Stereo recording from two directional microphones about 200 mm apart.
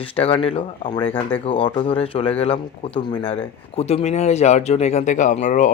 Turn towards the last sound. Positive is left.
turn(degrees=40)  # may be behind; listen again after turning